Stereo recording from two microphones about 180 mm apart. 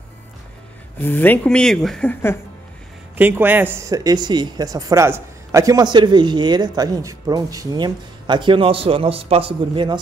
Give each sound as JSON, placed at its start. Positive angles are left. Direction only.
{"t": 0.9, "sound": "speech", "side_deg": 10}
{"t": 3.2, "sound": "speech", "side_deg": -10}